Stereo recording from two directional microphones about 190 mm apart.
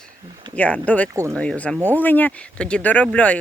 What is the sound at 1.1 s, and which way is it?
Speech, 15° right (ahead or behind).